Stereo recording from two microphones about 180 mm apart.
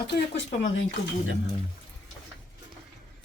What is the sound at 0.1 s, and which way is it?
Speech, 90° left.